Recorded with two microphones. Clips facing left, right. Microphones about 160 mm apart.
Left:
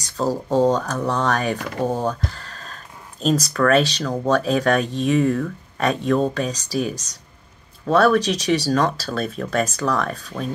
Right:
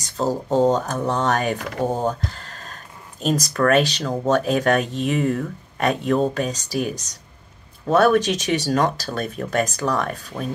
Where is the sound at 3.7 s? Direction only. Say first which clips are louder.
Even; 15° right (ahead or behind).